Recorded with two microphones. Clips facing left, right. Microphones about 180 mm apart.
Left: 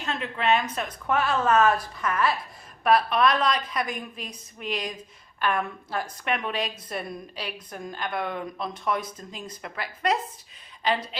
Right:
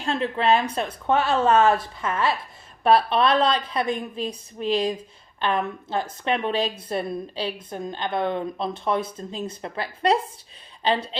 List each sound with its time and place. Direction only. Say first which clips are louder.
0.0 s speech: right 5 dB; 30° right (ahead or behind)